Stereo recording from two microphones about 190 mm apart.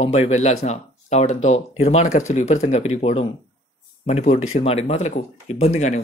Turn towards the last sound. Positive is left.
turn(degrees=40)  # may be behind; listen again after turning